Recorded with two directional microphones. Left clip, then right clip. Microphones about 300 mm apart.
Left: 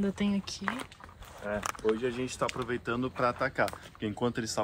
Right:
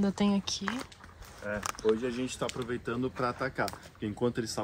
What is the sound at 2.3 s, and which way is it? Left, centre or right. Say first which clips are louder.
Speech: left 2 dB; centre.